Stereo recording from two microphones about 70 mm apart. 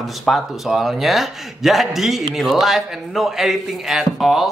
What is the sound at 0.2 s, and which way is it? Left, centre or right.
Speech, centre.